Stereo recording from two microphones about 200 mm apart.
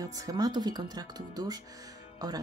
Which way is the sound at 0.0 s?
15° right (ahead or behind).